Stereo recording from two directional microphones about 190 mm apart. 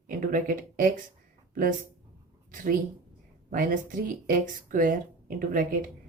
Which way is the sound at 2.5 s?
45° right (ahead or behind).